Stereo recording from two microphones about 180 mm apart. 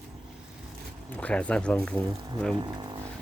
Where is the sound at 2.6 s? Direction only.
25° right (ahead or behind).